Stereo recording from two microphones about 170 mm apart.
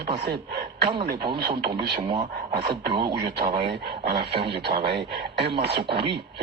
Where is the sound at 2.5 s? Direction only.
65° right (ahead or behind).